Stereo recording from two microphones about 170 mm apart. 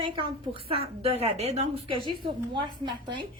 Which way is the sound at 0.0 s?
30° right (ahead or behind).